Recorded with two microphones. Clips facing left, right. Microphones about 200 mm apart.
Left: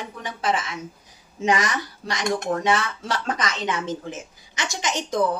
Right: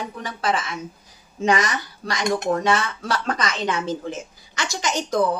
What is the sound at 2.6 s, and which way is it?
Speech, 20° left (ahead or behind).